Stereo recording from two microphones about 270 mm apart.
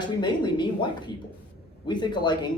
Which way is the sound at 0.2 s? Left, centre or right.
Centre.